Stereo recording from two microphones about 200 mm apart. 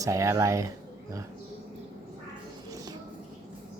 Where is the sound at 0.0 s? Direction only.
15° right (ahead or behind).